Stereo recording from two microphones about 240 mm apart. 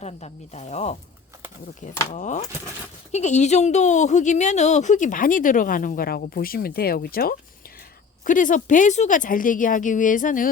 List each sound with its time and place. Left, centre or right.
0.0 s speech: left
2.1 s speech: left